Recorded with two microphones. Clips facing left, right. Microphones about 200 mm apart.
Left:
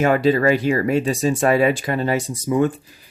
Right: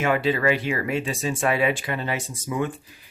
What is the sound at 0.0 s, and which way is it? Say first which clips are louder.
Speech: left 6 dB; 40° left (ahead or behind).